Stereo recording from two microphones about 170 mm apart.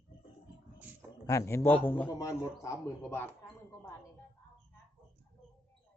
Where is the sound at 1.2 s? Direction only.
20° left (ahead or behind).